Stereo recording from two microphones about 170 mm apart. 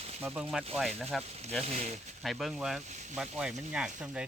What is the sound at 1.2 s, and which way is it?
Speech, 40° right (ahead or behind).